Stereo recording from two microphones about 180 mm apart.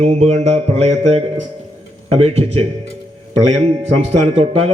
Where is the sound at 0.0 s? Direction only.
35° right (ahead or behind).